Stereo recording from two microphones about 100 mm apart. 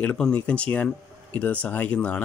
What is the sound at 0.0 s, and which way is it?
Speech, 15° left (ahead or behind).